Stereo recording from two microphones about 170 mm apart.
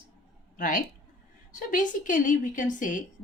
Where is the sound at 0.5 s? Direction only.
55° left (ahead or behind).